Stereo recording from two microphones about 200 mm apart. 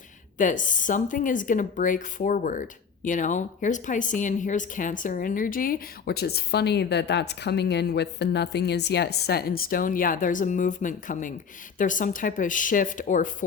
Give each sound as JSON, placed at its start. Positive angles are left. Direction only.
{"t": 0.3, "sound": "speech", "side_deg": 40}